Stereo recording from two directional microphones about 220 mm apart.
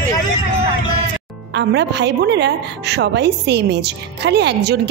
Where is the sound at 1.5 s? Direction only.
50° right (ahead or behind).